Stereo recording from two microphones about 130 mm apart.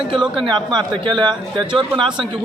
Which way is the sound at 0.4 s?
35° right (ahead or behind).